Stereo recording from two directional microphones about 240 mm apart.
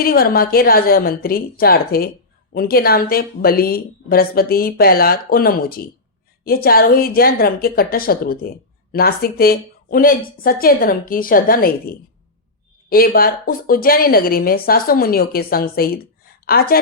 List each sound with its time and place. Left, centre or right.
0.0 s a woman's voice: left